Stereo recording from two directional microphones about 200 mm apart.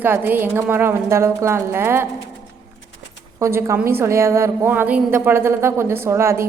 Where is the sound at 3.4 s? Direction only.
15° right (ahead or behind).